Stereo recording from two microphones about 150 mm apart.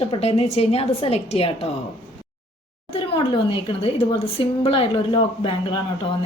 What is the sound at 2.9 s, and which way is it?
A woman's voice, 35° left (ahead or behind).